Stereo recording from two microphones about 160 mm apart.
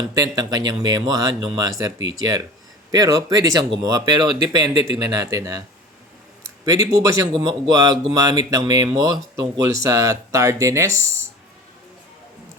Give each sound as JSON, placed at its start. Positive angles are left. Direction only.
{"t": 0.1, "sound": "speech", "side_deg": -25}